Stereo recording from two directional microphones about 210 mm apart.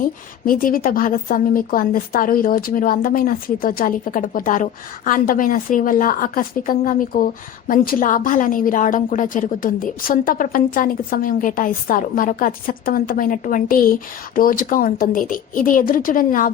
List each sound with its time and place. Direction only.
0.0 s a woman's voice: 40° left (ahead or behind)